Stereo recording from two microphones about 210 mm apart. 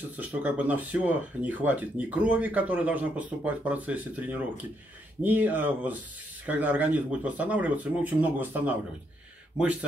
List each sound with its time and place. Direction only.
0.2 s speech: 5° right (ahead or behind)